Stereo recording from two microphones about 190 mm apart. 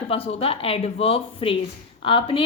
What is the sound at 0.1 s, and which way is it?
A woman's voice, 30° left (ahead or behind).